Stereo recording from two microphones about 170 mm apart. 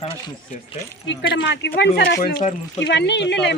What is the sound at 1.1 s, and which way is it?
Speech, 90° left.